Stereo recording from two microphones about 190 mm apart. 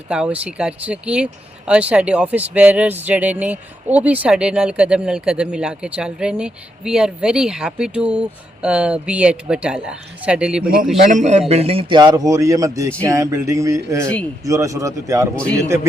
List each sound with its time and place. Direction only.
0.1 s speech: 5° right (ahead or behind)
11.1 s a man's voice: 35° right (ahead or behind); by 15.9 s 15° right (ahead or behind)